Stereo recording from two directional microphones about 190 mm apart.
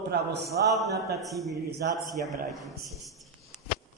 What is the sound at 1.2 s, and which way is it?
Speech, centre (ahead or behind).